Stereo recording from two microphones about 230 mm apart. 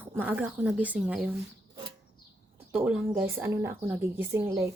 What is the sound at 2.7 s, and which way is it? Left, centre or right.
A woman's voice, centre.